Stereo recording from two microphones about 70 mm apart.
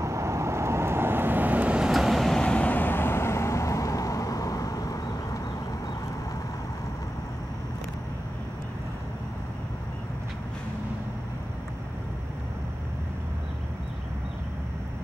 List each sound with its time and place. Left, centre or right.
0.0 s vehicle: right
1.8 s vehicle: centre
2.3 s vehicle: centre; by 5.4 s left